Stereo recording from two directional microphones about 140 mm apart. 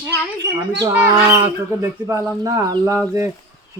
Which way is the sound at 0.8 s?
20° right (ahead or behind).